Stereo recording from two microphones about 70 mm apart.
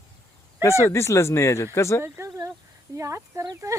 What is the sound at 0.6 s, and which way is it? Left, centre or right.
Speech, left.